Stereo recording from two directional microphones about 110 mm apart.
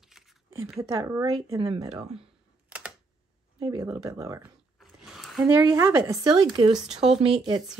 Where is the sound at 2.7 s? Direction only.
10° right (ahead or behind).